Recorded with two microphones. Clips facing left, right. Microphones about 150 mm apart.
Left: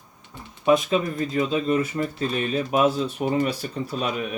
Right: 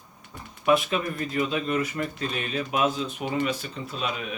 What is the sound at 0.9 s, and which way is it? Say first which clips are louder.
Speech: left 4 dB; 30° left (ahead or behind).